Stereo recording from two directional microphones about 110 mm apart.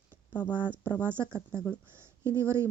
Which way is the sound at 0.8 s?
20° right (ahead or behind).